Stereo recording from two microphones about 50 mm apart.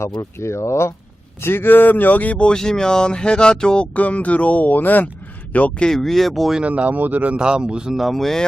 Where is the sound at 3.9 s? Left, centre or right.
Left.